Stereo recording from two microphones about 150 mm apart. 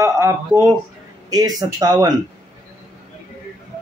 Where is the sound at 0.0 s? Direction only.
20° right (ahead or behind).